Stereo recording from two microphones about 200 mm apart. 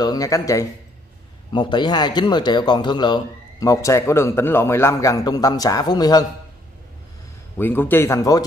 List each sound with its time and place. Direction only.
0.0 s speech: 20° left (ahead or behind)
7.5 s speech: 10° left (ahead or behind)